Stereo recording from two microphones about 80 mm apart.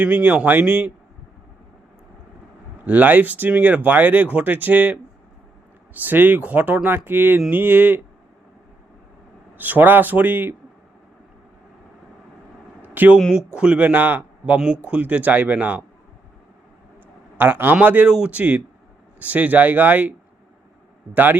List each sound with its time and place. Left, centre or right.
0.0 s speech: right
2.8 s speech: right
9.6 s speech: right
12.8 s a sound: right
13.3 s speech: centre
17.3 s speech: right